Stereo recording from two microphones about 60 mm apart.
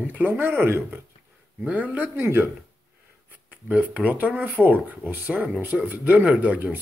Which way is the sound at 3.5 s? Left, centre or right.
Right.